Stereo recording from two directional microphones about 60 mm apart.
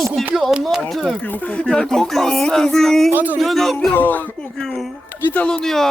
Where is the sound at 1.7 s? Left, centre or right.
Centre.